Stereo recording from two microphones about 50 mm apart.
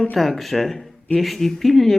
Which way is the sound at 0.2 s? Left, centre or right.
Centre.